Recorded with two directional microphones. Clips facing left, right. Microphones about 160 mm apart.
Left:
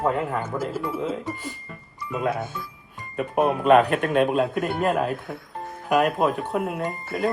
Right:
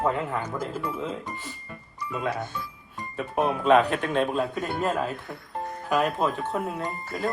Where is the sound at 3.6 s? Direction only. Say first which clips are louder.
Left 3 dB; 50° left (ahead or behind).